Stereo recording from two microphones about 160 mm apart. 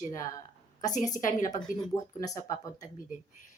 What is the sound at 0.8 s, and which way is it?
Speech, 50° left (ahead or behind).